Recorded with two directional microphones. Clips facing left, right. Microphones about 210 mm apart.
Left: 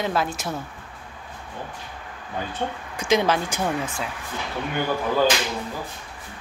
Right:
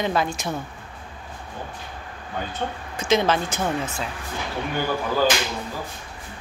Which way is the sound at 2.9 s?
15° left (ahead or behind).